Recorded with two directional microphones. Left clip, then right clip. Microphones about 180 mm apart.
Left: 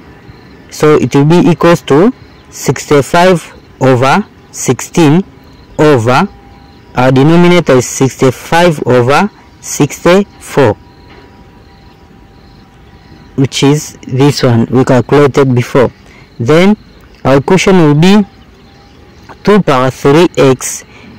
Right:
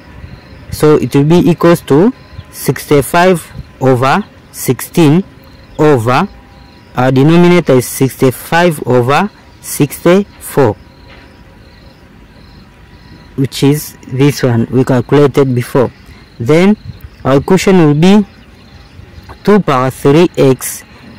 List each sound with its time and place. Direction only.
0.9 s a man's voice: 10° left (ahead or behind)
13.4 s a man's voice: 10° left (ahead or behind)
19.5 s a man's voice: 15° left (ahead or behind)